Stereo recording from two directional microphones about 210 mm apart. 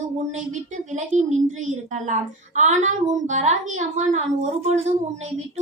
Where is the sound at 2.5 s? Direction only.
35° right (ahead or behind).